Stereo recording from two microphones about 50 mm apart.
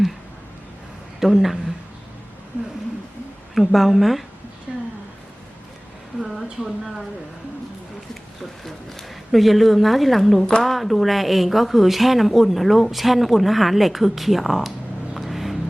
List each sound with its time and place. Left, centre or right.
1.2 s a woman's voice: centre
3.5 s a woman's voice: centre
4.7 s a sound: centre
6.2 s a woman's voice: centre
8.6 s a woman's voice: centre
15.1 s vehicle: centre